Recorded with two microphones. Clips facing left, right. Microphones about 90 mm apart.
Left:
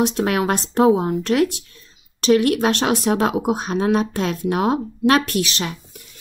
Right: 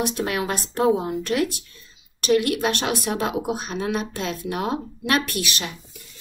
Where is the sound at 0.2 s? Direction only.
50° left (ahead or behind).